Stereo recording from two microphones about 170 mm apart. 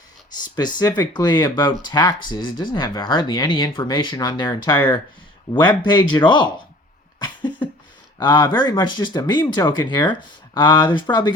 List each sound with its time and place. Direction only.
0.3 s speech: 25° left (ahead or behind)
8.2 s speech: 25° left (ahead or behind)